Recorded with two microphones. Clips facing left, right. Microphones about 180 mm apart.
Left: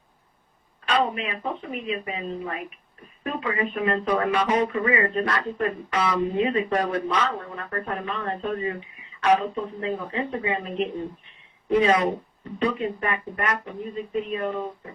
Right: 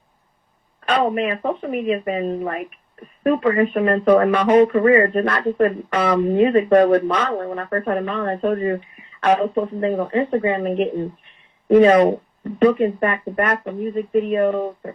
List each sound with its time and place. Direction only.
0.9 s speech: 55° right (ahead or behind)